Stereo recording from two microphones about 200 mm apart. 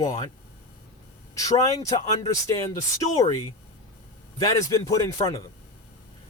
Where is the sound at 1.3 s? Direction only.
15° left (ahead or behind).